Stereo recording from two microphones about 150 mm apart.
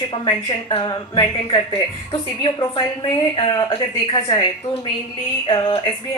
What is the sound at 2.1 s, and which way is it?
Speech, 30° left (ahead or behind).